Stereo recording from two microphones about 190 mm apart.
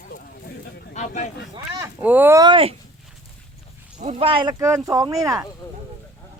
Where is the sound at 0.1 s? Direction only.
50° left (ahead or behind).